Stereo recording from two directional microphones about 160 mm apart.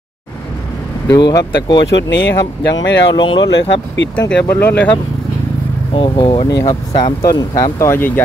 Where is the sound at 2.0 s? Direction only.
90° left.